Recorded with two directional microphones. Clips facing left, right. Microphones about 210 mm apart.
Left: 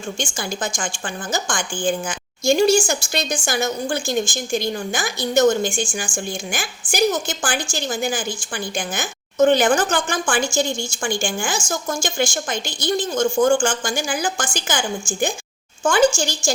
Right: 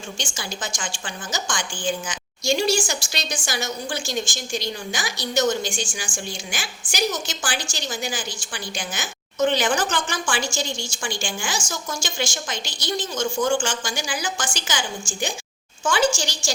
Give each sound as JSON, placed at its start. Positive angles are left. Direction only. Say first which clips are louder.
{"t": 0.2, "sound": "a woman's voice", "louder": "left 5 dB", "side_deg": 50}